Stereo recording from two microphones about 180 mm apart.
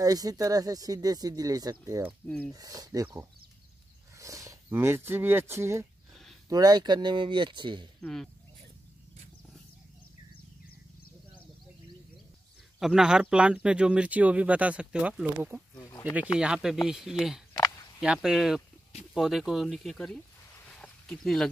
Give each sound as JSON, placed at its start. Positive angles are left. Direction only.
{"t": 0.0, "sound": "speech", "side_deg": -20}
{"t": 2.2, "sound": "speech", "side_deg": 5}
{"t": 2.5, "sound": "speech", "side_deg": -20}
{"t": 8.0, "sound": "speech", "side_deg": 5}
{"t": 12.7, "sound": "speech", "side_deg": 0}
{"t": 15.7, "sound": "speech", "side_deg": 20}
{"t": 16.3, "sound": "speech", "side_deg": -5}
{"t": 17.6, "sound": "a sound", "side_deg": 20}
{"t": 18.0, "sound": "speech", "side_deg": -5}
{"t": 20.5, "sound": "a sound", "side_deg": 5}